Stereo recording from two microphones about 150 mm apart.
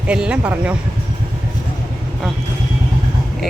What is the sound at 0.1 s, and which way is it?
Speech, 10° right (ahead or behind).